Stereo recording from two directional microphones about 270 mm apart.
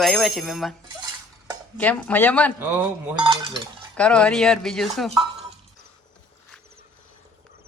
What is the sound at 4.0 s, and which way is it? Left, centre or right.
Speech, centre.